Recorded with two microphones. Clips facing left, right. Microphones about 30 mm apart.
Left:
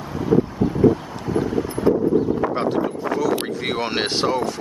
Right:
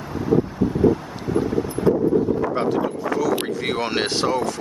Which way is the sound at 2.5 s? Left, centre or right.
Centre.